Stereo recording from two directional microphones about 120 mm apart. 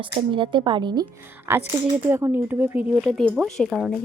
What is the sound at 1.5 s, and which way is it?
Speech, 20° right (ahead or behind).